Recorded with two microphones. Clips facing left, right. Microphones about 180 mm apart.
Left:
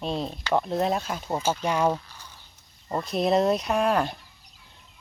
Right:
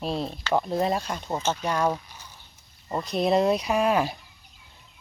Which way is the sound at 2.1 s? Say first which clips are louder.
Right 1 dB; 10° right (ahead or behind).